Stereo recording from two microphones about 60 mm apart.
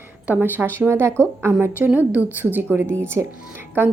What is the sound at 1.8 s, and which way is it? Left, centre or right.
A woman's voice, right.